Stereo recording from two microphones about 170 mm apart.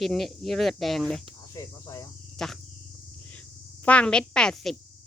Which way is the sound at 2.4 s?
5° left (ahead or behind).